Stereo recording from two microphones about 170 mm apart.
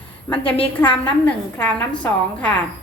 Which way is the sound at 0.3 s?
30° left (ahead or behind).